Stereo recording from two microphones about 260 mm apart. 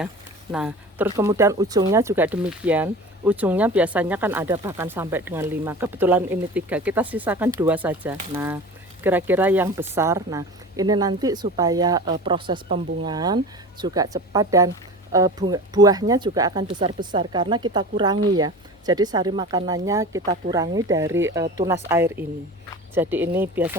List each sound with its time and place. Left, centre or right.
0.5 s speech: centre
20.4 s speech: right
20.9 s speech: centre